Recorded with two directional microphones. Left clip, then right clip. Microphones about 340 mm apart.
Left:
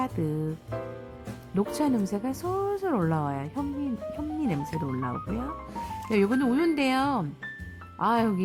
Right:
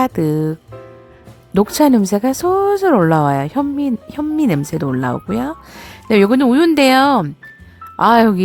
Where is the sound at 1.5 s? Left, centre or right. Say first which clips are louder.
Right 14 dB; right.